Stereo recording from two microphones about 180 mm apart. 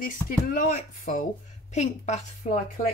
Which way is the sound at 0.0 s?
45° left (ahead or behind).